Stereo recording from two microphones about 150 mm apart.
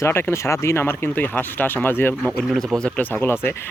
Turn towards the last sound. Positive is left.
turn(degrees=15)  # may be behind; listen again after turning